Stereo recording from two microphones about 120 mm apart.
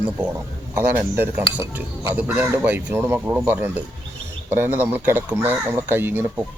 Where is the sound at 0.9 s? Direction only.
20° right (ahead or behind).